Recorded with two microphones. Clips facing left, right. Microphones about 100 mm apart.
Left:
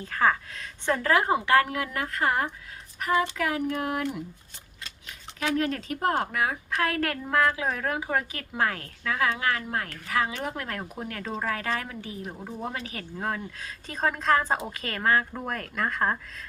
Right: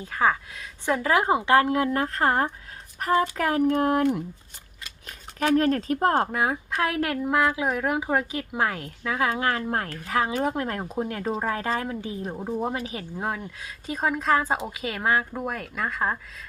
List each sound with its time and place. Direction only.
0.0 s speech: 10° right (ahead or behind)
9.3 s a woman's voice: 30° right (ahead or behind); by 16.1 s 5° right (ahead or behind)